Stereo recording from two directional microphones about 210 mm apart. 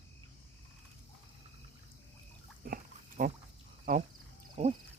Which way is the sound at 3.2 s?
35° right (ahead or behind).